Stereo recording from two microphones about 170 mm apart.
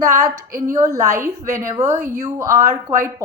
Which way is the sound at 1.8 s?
45° right (ahead or behind).